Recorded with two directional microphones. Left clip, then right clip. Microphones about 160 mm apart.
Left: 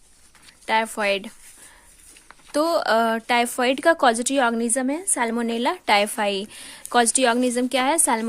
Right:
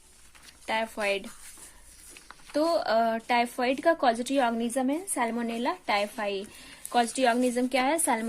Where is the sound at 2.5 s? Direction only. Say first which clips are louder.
Left 5 dB; 45° left (ahead or behind).